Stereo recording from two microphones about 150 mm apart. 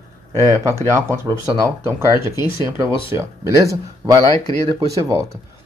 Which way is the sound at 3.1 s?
20° right (ahead or behind).